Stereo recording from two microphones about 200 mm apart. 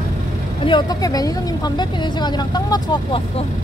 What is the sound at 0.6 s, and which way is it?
Speech, 20° left (ahead or behind).